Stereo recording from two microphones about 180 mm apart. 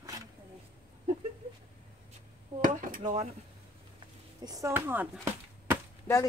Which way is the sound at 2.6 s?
50° right (ahead or behind).